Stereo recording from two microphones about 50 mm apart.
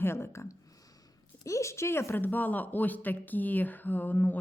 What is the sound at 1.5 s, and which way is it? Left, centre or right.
Speech, left.